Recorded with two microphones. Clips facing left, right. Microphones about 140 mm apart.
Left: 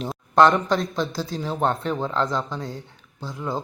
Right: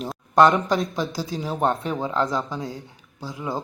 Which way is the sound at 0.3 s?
10° right (ahead or behind).